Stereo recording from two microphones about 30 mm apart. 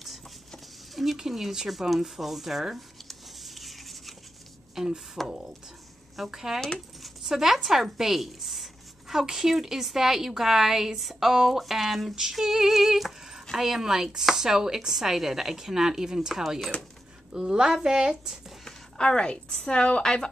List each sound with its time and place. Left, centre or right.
1.1 s speech: centre
3.1 s a sound: centre
4.7 s a woman's voice: centre
6.3 s a woman's voice: centre
9.1 s a woman's voice: centre
18.9 s a woman's voice: left
20.0 s speech: left